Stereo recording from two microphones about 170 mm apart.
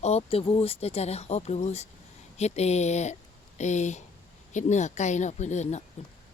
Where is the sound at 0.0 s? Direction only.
40° left (ahead or behind).